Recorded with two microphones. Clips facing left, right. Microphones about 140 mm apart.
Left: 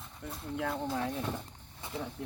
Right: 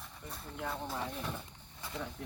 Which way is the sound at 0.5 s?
90° left.